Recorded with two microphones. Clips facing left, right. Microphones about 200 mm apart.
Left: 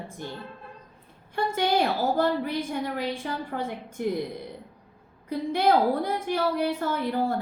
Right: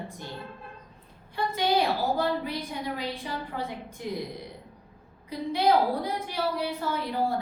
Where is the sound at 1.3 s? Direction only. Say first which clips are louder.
Left 1 dB; 50° left (ahead or behind).